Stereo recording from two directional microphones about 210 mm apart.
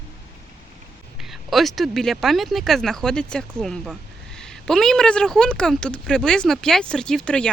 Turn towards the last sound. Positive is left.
turn(degrees=5)  # may be behind; listen again after turning